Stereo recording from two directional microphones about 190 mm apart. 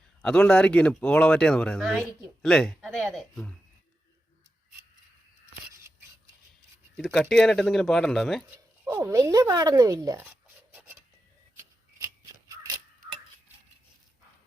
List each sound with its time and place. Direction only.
0.2 s speech: 5° left (ahead or behind)
6.9 s speech: centre (ahead or behind)
8.4 s speech: 10° right (ahead or behind)
10.2 s filing: 10° right (ahead or behind)